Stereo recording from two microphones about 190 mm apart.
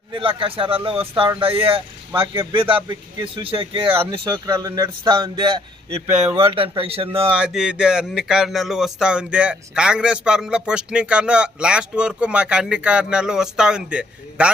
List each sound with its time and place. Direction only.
0.1 s a man's voice: 30° right (ahead or behind)
7.3 s speech: 5° right (ahead or behind)